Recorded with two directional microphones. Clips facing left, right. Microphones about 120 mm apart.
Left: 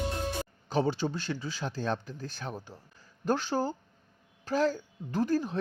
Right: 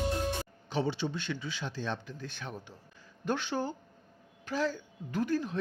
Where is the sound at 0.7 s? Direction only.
45° left (ahead or behind).